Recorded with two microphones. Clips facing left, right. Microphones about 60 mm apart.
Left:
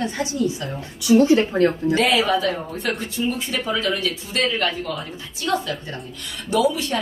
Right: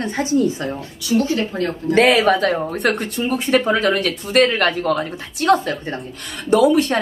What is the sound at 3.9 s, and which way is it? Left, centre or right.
A woman's voice, right.